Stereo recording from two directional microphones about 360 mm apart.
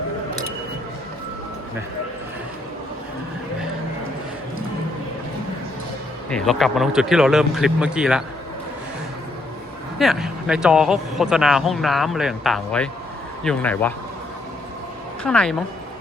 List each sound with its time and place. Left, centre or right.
6.3 s speech: centre
10.0 s speech: centre
15.2 s speech: centre